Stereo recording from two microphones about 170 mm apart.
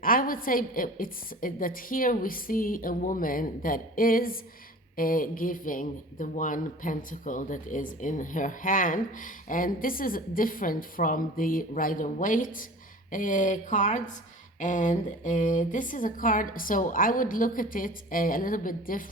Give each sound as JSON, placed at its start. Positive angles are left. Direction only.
{"t": 0.0, "sound": "a woman's voice", "side_deg": 55}